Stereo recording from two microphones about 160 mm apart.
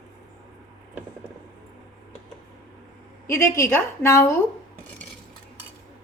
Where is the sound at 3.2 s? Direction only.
15° left (ahead or behind).